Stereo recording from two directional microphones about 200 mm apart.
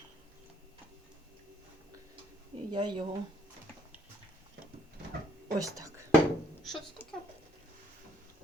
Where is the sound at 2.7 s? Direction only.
20° right (ahead or behind).